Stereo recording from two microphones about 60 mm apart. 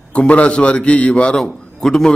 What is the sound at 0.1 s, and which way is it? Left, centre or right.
A man's voice, left.